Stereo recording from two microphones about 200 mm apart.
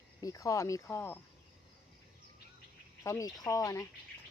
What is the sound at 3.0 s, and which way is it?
Speech, 15° left (ahead or behind).